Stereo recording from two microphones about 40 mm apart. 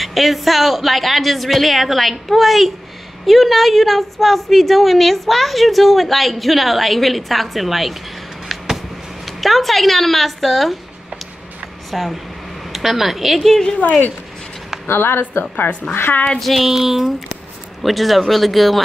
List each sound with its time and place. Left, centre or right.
0.0 s a woman's voice: centre
9.2 s a woman's voice: centre
11.9 s a woman's voice: centre
14.9 s speech: left
15.9 s a woman's voice: left
16.3 s a woman's voice: centre
16.7 s a woman's voice: centre